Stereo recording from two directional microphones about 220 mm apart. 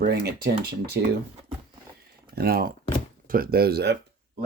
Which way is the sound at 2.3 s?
45° right (ahead or behind).